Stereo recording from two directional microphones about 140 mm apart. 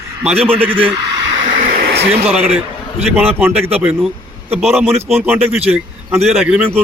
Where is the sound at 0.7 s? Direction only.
40° right (ahead or behind).